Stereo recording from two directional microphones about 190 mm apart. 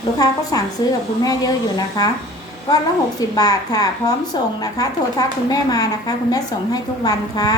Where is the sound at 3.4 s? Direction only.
20° left (ahead or behind).